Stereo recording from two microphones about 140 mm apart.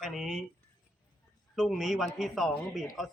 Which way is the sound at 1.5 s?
Centre (ahead or behind).